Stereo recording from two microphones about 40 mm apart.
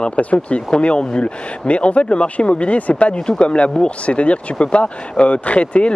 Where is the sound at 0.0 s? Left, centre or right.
Left.